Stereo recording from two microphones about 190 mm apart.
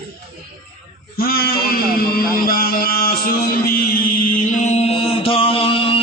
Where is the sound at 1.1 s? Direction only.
55° left (ahead or behind).